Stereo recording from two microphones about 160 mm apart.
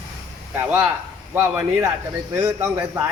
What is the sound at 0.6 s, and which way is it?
A man's voice, 10° right (ahead or behind).